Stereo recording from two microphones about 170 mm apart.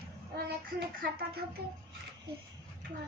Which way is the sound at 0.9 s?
60° right (ahead or behind).